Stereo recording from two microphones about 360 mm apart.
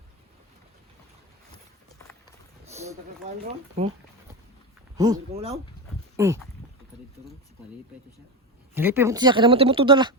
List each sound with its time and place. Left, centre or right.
2.7 s speech: centre
4.9 s speech: centre
8.7 s speech: centre